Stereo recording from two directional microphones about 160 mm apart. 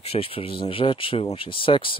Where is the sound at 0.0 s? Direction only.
35° left (ahead or behind).